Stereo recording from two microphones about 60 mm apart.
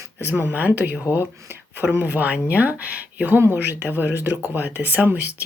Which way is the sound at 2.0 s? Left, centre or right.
Right.